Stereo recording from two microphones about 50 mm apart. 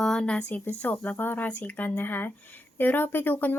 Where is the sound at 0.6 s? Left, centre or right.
Left.